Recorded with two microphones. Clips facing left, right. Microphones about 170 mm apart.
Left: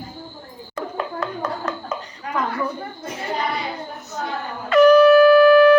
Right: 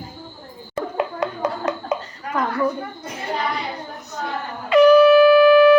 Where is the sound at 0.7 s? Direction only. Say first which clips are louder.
Right 3 dB; 20° right (ahead or behind).